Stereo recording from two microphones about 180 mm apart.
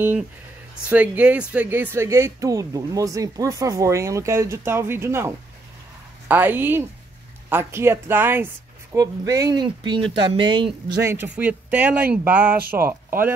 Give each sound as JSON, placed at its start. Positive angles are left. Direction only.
{"t": 0.8, "sound": "speech", "side_deg": -10}
{"t": 11.0, "sound": "speech", "side_deg": -15}
{"t": 12.5, "sound": "speech", "side_deg": -55}